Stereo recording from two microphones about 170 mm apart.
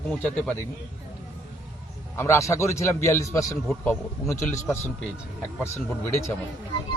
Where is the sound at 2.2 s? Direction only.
15° left (ahead or behind).